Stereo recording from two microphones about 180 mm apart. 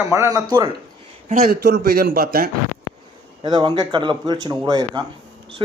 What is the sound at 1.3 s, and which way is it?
Speech, 45° right (ahead or behind).